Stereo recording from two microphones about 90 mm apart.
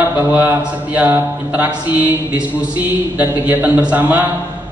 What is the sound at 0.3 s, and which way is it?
A man's voice, 20° right (ahead or behind).